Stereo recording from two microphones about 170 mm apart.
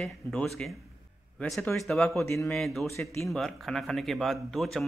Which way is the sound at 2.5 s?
Centre (ahead or behind).